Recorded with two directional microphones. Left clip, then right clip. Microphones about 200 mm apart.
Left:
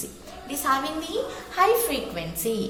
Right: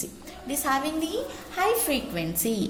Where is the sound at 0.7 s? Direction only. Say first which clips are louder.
Left 2 dB; 40° right (ahead or behind).